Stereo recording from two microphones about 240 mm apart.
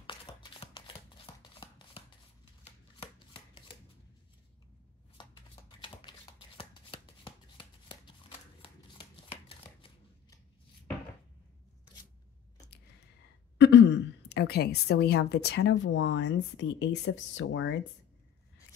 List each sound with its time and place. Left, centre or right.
0.0 s shuffling cards: left
5.1 s shuffling cards: centre
13.6 s a woman's voice: left